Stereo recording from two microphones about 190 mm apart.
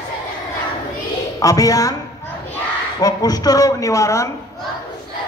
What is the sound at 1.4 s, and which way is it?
Speech, 20° left (ahead or behind).